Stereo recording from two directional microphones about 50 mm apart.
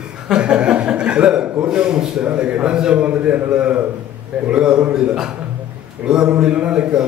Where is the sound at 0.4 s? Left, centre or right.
Right.